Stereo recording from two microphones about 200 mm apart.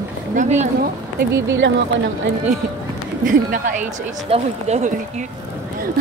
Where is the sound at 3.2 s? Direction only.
40° right (ahead or behind).